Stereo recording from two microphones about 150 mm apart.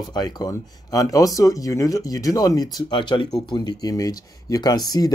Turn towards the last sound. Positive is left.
turn(degrees=25)  # may be behind; listen again after turning